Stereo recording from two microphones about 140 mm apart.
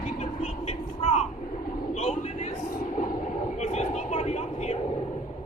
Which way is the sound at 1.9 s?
50° left (ahead or behind).